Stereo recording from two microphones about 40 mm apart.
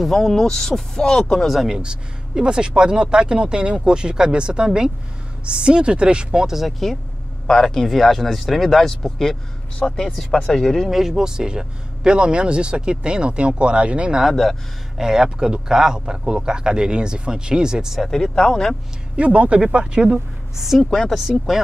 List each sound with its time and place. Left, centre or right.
0.0 s speech: centre
1.4 s speech: centre
1.7 s speech: right
6.4 s speech: centre
7.4 s speech: centre
10.9 s speech: centre; by 14.2 s right
14.3 s speech: centre
15.0 s speech: centre
17.9 s speech: centre
19.1 s speech: right
20.5 s speech: centre